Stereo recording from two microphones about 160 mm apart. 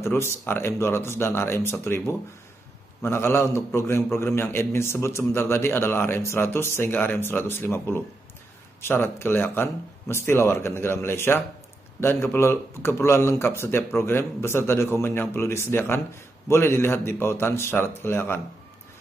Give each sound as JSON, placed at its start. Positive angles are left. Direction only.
{"t": 0.0, "sound": "a man's voice", "side_deg": 15}